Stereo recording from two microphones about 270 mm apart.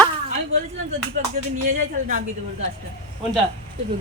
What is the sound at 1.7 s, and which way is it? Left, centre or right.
Speech, right.